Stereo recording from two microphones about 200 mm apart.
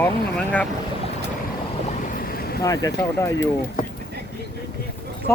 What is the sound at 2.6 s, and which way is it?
Speech, 15° left (ahead or behind).